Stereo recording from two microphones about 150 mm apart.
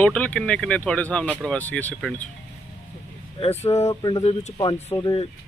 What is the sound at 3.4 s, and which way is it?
Speech, 45° left (ahead or behind).